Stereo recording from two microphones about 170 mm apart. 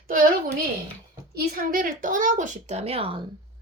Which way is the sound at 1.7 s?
55° right (ahead or behind).